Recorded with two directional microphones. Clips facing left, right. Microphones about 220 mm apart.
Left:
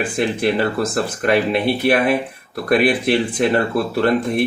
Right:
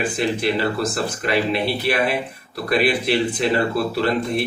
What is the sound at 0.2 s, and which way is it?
A man's voice, 50° left (ahead or behind).